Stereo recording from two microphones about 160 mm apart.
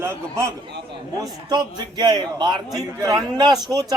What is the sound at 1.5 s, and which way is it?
Speech, 25° right (ahead or behind).